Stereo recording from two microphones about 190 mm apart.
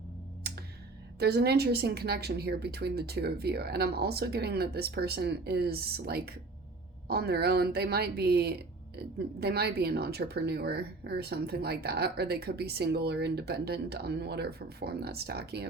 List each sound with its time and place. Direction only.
1.2 s speech: 55° right (ahead or behind)